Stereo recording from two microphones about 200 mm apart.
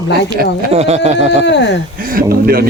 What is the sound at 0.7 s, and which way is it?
Speech, 30° right (ahead or behind).